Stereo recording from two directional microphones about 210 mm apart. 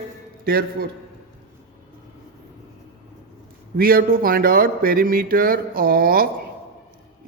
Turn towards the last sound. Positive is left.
turn(degrees=-45)  # may be behind; listen again after turning